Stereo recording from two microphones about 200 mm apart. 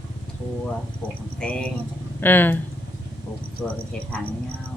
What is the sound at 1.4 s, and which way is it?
Speech, 5° left (ahead or behind).